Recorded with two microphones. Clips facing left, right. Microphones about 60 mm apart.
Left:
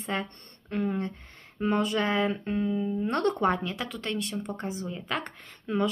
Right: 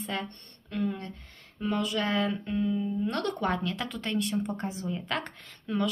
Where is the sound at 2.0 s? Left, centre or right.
Left.